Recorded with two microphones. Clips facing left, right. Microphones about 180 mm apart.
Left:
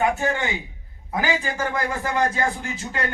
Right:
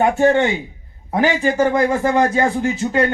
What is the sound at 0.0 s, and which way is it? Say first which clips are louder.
A man's voice: right 9 dB; 30° right (ahead or behind).